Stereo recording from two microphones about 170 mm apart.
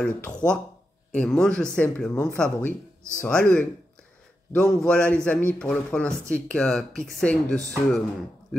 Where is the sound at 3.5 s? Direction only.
10° left (ahead or behind).